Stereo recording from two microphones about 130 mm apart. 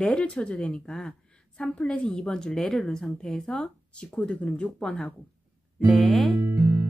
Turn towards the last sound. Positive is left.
turn(degrees=-25)  # may be behind; listen again after turning